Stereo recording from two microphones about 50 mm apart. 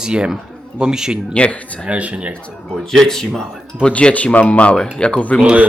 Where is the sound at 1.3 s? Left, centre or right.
Left.